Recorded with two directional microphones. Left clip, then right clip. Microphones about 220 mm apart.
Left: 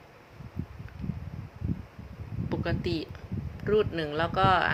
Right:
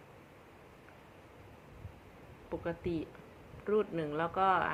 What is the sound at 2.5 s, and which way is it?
Speech, 20° left (ahead or behind).